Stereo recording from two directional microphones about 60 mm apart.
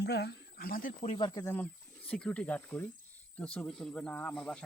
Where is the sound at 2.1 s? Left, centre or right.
Centre.